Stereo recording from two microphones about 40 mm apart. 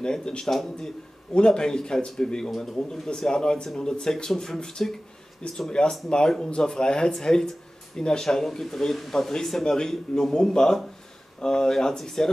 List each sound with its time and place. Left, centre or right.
0.0 s speech: left